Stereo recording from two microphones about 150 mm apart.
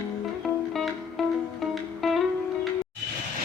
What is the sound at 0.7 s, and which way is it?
Music, centre (ahead or behind).